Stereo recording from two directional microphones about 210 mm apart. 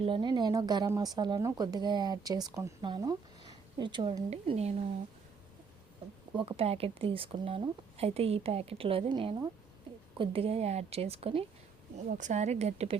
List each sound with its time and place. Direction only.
0.0 s a woman's voice: 25° right (ahead or behind)
6.3 s a woman's voice: 25° right (ahead or behind)